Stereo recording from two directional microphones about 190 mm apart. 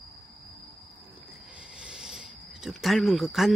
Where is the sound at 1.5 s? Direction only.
5° right (ahead or behind).